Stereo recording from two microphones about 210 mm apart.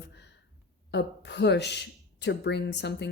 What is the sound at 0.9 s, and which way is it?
A woman's voice, 55° left (ahead or behind).